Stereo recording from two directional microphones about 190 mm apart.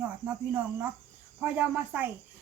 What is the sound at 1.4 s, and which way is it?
Speech, 10° right (ahead or behind).